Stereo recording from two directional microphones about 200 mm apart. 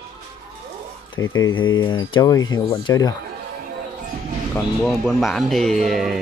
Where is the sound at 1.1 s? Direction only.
80° left.